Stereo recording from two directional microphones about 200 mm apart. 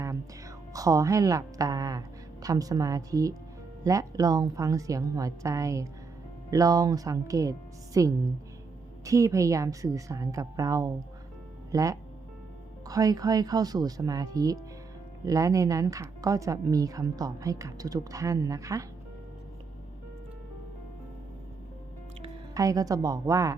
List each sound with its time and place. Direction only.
0.0 s a woman's voice: 15° right (ahead or behind)
22.5 s speech: 15° right (ahead or behind)